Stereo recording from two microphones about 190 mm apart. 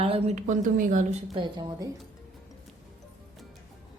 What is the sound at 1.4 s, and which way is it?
Speech, 25° right (ahead or behind).